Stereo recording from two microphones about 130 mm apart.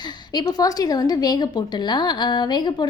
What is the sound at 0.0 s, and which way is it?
A woman's voice, 35° left (ahead or behind).